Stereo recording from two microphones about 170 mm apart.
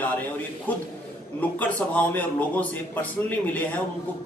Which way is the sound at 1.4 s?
10° left (ahead or behind).